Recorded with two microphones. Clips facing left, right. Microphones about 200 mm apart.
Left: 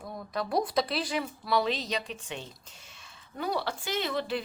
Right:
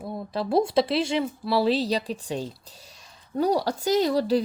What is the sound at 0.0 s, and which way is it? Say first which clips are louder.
Speech: right 5 dB; 30° right (ahead or behind).